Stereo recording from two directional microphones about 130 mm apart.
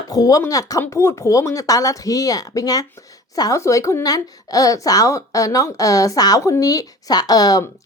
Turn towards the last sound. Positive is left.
turn(degrees=30)  # may be behind; listen again after turning